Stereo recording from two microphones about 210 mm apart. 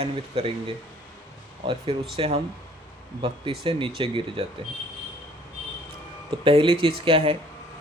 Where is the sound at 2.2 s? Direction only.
30° right (ahead or behind).